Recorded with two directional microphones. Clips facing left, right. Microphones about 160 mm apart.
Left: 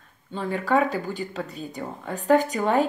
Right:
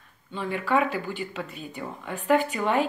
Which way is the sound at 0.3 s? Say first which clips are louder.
Left 2 dB; 40° left (ahead or behind).